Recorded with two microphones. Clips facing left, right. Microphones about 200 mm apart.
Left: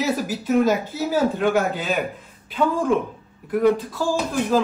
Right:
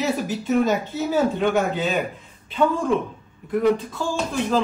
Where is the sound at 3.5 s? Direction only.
5° left (ahead or behind).